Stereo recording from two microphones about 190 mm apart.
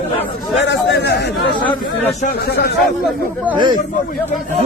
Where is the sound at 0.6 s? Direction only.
65° left (ahead or behind).